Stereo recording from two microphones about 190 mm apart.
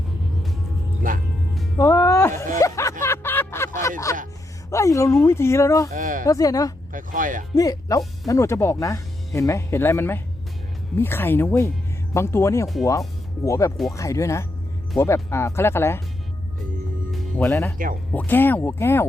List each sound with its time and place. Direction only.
1.8 s music: 15° left (ahead or behind)
2.6 s a sound: 15° left (ahead or behind)
3.8 s speech: 15° left (ahead or behind)
5.9 s speech: 45° right (ahead or behind)
6.2 s speech: 20° left (ahead or behind)
6.9 s speech: 45° right (ahead or behind)
7.5 s speech: 20° left (ahead or behind)
17.1 s music: 10° left (ahead or behind)
18.1 s speech: 10° left (ahead or behind)